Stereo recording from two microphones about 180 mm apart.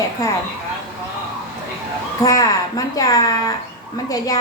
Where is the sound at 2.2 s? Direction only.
20° left (ahead or behind).